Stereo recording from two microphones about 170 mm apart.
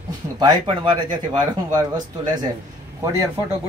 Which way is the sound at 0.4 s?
25° right (ahead or behind).